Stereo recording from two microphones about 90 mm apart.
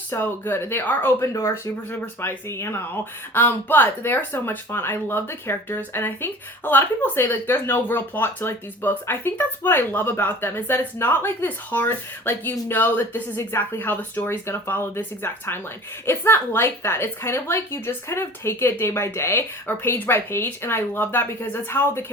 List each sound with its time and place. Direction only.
0.1 s speech: 25° left (ahead or behind)